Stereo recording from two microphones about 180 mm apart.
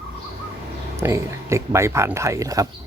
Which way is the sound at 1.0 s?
15° right (ahead or behind).